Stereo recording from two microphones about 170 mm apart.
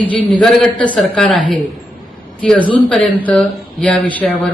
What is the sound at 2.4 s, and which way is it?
A man's voice, 5° left (ahead or behind).